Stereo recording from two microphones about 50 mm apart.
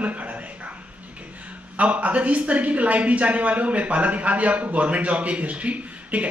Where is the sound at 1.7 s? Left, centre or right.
Right.